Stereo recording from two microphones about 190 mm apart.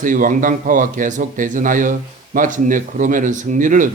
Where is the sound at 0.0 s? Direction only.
45° right (ahead or behind).